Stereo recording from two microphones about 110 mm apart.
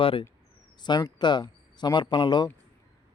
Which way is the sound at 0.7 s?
40° left (ahead or behind).